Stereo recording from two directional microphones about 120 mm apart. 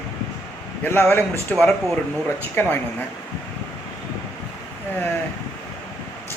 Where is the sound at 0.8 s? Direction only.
15° left (ahead or behind).